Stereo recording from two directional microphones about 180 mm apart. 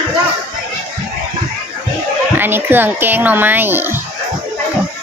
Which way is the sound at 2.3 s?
10° right (ahead or behind).